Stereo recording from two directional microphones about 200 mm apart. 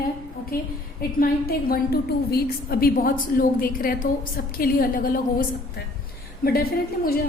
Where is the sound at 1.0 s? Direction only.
45° left (ahead or behind).